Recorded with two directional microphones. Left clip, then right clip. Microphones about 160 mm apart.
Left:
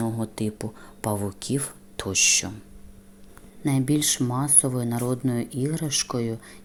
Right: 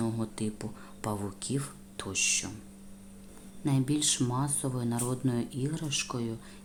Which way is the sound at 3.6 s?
30° left (ahead or behind).